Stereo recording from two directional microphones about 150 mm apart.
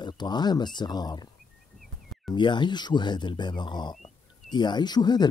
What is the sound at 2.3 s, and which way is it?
Speech, 30° left (ahead or behind).